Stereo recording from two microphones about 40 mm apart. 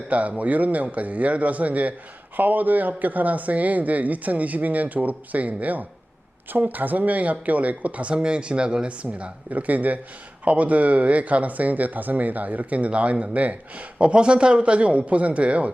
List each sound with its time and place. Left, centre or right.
0.1 s speech: right
8.1 s speech: right